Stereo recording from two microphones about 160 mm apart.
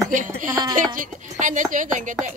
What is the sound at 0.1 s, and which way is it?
Speech, 55° right (ahead or behind).